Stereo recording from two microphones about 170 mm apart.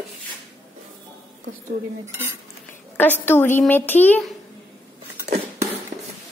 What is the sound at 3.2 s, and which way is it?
Speech, 10° left (ahead or behind).